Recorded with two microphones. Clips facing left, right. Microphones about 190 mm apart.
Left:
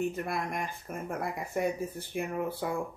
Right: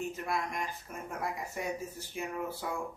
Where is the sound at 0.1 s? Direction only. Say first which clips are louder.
Left 2 dB; 55° left (ahead or behind).